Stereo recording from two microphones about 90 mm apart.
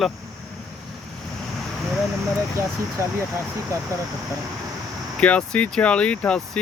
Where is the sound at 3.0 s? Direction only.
30° right (ahead or behind).